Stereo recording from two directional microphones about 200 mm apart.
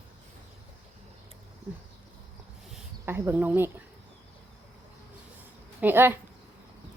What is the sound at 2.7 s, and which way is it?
Speech, 10° right (ahead or behind).